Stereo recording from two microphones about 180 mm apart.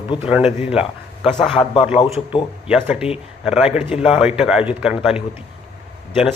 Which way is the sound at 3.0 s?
5° right (ahead or behind).